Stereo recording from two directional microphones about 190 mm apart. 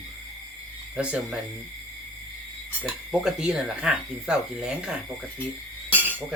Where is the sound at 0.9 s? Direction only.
5° right (ahead or behind).